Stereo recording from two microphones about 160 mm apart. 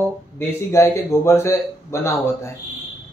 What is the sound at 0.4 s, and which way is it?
A man's voice, 15° left (ahead or behind).